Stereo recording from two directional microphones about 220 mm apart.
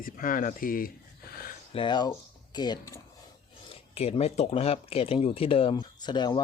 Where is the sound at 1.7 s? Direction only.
20° left (ahead or behind).